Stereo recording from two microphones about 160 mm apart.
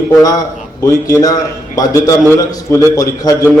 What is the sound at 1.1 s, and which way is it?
A man's voice, 20° left (ahead or behind).